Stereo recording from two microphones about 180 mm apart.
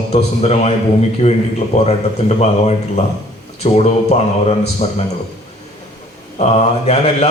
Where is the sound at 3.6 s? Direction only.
35° left (ahead or behind).